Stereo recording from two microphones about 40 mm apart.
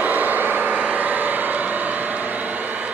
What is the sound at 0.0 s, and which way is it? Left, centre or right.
Vehicle, right.